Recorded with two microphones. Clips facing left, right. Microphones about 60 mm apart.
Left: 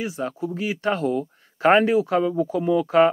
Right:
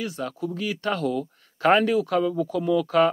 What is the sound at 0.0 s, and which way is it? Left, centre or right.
Speech, left.